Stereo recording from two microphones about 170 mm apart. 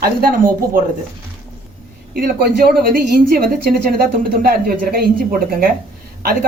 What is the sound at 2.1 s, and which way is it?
Speech, 60° right (ahead or behind).